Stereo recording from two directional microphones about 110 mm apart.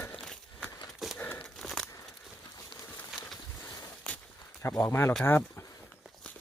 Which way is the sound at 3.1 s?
5° right (ahead or behind).